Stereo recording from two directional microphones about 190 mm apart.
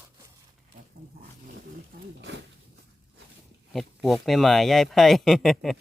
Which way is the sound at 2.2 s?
65° right (ahead or behind).